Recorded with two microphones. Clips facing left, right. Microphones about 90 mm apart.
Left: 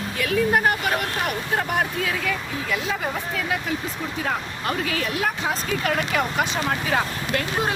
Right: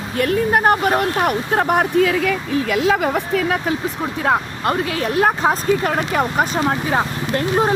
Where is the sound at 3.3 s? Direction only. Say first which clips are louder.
Right 7 dB; 55° right (ahead or behind).